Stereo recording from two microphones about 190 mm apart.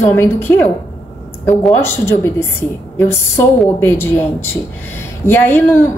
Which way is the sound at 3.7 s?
10° left (ahead or behind).